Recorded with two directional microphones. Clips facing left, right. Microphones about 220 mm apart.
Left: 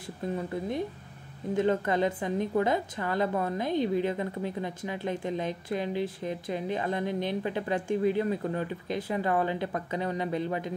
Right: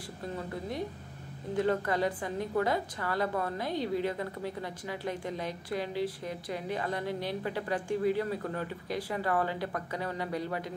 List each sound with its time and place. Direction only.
1.5 s a woman's voice: 20° left (ahead or behind)